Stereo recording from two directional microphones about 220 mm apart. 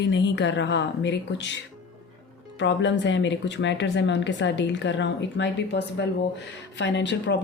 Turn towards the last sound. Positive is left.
turn(degrees=55)  # may be behind; listen again after turning